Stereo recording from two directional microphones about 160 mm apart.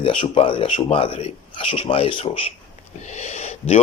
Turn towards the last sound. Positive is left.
turn(degrees=40)  # may be behind; listen again after turning